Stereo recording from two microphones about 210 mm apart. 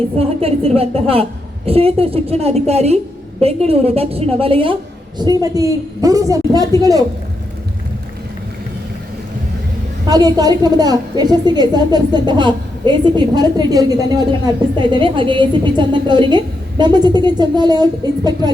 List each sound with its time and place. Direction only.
0.2 s a woman's voice: 30° right (ahead or behind)
10.1 s a woman's voice: 20° right (ahead or behind)